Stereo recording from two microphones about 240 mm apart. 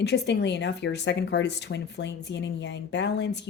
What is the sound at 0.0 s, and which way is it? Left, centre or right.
Speech, left.